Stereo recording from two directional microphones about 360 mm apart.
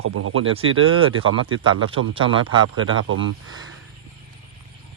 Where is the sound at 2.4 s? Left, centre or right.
Right.